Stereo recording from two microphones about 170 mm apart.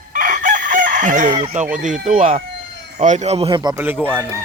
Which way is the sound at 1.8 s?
50° right (ahead or behind).